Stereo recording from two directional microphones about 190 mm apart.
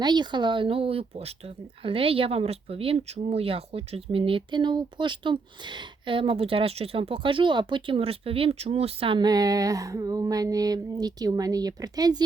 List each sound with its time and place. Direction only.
0.0 s speech: 25° right (ahead or behind)